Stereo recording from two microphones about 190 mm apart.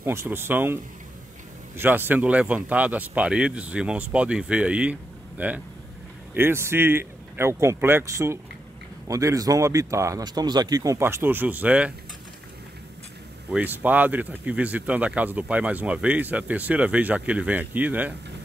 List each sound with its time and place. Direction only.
0.0 s speech: 15° right (ahead or behind)
1.8 s speech: 10° right (ahead or behind)
13.5 s speech: 10° right (ahead or behind)